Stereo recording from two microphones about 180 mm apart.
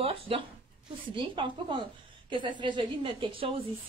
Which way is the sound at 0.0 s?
30° right (ahead or behind).